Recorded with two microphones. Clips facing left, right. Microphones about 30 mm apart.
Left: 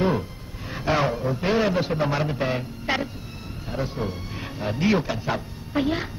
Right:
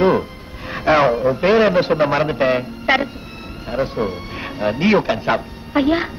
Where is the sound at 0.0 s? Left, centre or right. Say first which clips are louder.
Right 8 dB; right.